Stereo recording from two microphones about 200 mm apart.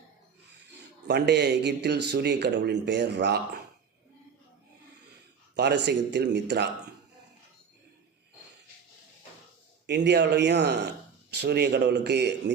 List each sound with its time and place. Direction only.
1.0 s speech: 55° right (ahead or behind)
5.5 s speech: 60° right (ahead or behind)
9.8 s speech: 60° right (ahead or behind)